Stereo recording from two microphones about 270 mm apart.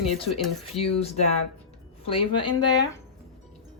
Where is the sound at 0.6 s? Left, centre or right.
Left.